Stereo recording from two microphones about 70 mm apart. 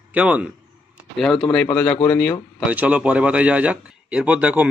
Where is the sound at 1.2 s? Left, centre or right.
Centre.